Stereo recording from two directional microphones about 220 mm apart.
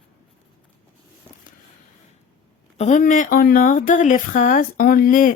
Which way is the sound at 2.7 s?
35° left (ahead or behind).